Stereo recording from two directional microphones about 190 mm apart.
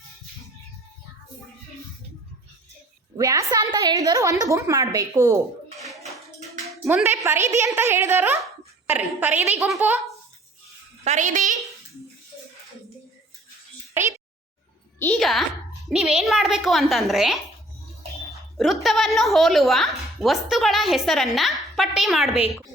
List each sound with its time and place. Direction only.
3.2 s a woman's voice: 20° right (ahead or behind)
6.9 s a woman's voice: 10° right (ahead or behind)
11.0 s a child's voice: 40° right (ahead or behind)
14.0 s a sound: 10° right (ahead or behind)
14.9 s a woman's voice: 5° left (ahead or behind)
18.5 s a woman's voice: centre (ahead or behind)